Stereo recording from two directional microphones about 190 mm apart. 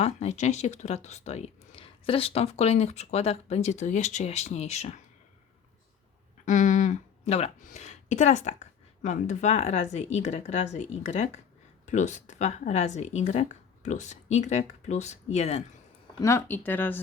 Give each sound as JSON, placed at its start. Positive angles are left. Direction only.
{"t": 0.0, "sound": "speech", "side_deg": 35}
{"t": 6.4, "sound": "speech", "side_deg": 40}
{"t": 16.2, "sound": "speech", "side_deg": 15}